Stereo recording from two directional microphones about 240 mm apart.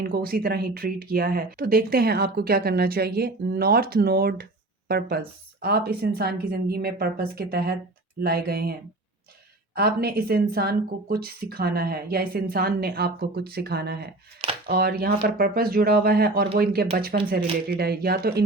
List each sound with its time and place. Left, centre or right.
0.0 s speech: right
9.7 s speech: right